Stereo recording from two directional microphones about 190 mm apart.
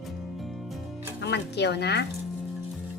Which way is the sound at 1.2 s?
65° left (ahead or behind).